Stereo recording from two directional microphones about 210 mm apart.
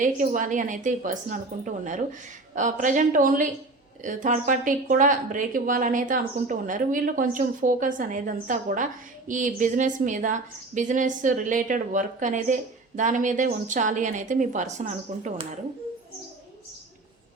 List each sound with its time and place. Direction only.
0.0 s a woman's voice: 40° right (ahead or behind)